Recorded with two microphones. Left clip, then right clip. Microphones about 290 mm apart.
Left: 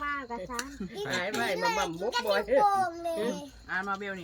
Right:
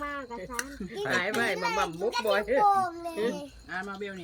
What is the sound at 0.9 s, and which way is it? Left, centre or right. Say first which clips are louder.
Speech: right 4 dB; centre.